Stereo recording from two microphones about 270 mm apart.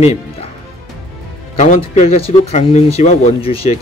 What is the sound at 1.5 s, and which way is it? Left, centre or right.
Speech, left.